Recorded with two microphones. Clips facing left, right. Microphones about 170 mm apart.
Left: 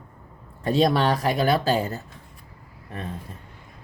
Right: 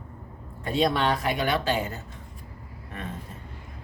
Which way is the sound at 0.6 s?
40° left (ahead or behind).